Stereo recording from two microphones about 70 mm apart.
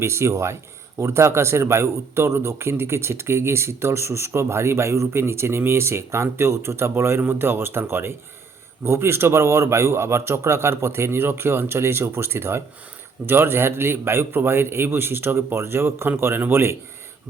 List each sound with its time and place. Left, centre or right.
0.0 s speech: right